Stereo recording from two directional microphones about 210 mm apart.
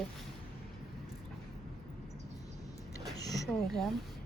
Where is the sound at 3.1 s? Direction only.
15° left (ahead or behind).